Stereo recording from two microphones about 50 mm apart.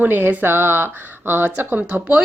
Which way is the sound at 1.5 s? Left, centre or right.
Right.